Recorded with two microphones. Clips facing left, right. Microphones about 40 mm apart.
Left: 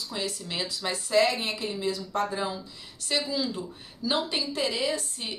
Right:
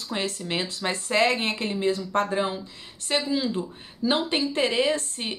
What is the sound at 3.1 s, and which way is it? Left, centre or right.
Speech, right.